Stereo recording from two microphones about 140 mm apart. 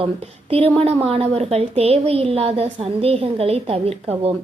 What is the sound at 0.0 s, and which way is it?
A woman's voice, 40° right (ahead or behind).